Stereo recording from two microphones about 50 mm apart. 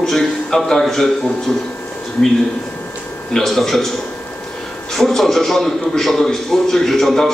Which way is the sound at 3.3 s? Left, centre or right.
Centre.